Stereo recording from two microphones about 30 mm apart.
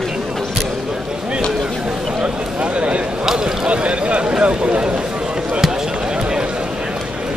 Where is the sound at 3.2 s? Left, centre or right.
Centre.